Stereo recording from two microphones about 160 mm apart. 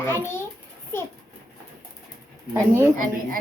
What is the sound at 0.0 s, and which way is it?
Speech, 15° left (ahead or behind).